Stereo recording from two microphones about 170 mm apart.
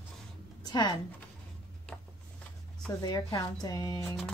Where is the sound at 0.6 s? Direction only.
25° left (ahead or behind).